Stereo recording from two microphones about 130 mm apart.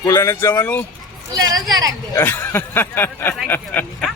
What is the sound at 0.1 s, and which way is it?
Speech, 20° left (ahead or behind).